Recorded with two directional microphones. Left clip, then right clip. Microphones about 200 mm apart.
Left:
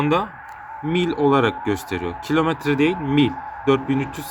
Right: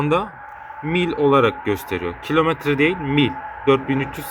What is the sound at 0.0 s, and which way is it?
Speech, centre (ahead or behind).